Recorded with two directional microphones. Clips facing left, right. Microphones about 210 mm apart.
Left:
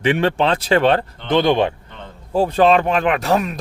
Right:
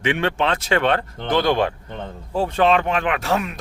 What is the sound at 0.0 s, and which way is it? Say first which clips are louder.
Speech: left 4 dB; 35° left (ahead or behind).